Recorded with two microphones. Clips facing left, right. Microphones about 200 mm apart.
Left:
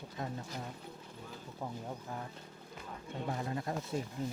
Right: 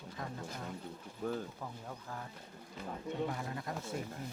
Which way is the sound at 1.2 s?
55° right (ahead or behind).